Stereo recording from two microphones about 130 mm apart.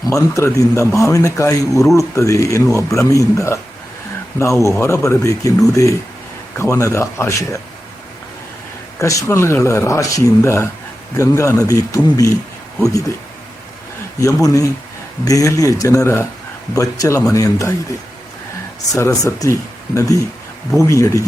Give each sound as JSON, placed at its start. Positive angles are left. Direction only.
{"t": 0.1, "sound": "speech", "side_deg": 25}
{"t": 4.8, "sound": "speech", "side_deg": 20}
{"t": 9.0, "sound": "speech", "side_deg": 25}
{"t": 14.4, "sound": "speech", "side_deg": 25}
{"t": 18.9, "sound": "speech", "side_deg": 25}